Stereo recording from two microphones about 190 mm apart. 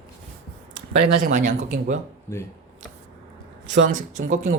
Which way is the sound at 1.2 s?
40° right (ahead or behind).